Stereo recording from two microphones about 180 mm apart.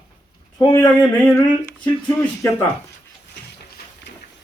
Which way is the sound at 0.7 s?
15° left (ahead or behind).